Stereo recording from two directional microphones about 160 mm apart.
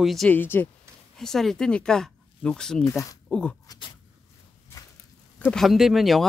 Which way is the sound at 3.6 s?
25° left (ahead or behind).